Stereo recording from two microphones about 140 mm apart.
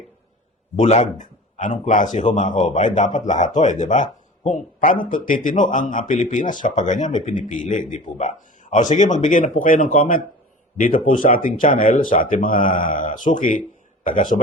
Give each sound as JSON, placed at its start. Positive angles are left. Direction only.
{"t": 0.8, "sound": "speech", "side_deg": 50}